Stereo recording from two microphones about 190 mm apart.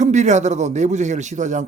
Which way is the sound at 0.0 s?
40° right (ahead or behind).